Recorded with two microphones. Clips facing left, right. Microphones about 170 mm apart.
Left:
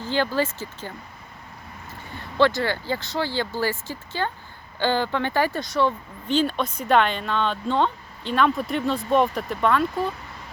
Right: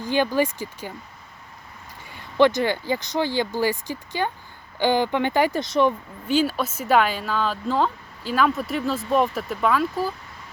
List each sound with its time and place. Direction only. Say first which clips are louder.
0.0 s speech: right 2 dB; 15° right (ahead or behind)
2.1 s speech: right 2 dB; 15° right (ahead or behind)
6.2 s speech: right 1 dB; 5° right (ahead or behind)